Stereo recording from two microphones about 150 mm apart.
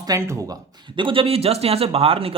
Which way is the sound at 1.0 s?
35° right (ahead or behind).